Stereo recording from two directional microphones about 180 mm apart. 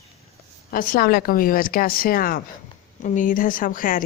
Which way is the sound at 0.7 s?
50° left (ahead or behind).